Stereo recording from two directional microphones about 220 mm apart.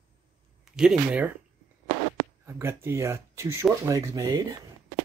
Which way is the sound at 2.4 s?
10° right (ahead or behind).